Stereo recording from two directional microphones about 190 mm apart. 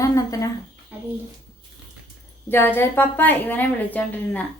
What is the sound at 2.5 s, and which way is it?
A woman's voice, 10° left (ahead or behind).